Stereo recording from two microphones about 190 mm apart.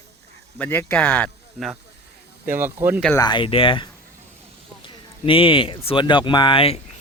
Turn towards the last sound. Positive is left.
turn(degrees=30)  # may be behind; listen again after turning